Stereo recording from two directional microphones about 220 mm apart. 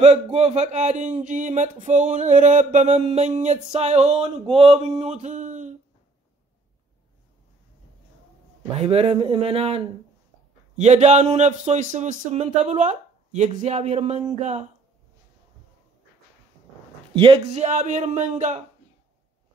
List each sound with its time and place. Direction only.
0.0 s speech: 30° right (ahead or behind)
8.7 s speech: 25° right (ahead or behind)
17.1 s speech: 25° right (ahead or behind)